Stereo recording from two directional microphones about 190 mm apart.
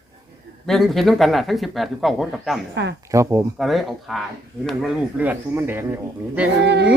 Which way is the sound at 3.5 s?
Centre (ahead or behind).